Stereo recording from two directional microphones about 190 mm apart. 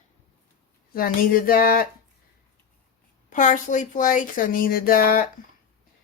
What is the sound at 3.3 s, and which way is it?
Speech, 40° left (ahead or behind).